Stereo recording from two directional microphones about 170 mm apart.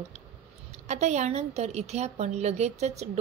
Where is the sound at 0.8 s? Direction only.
45° right (ahead or behind).